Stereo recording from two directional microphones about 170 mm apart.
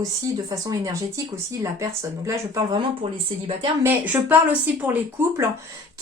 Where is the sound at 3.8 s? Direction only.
15° right (ahead or behind).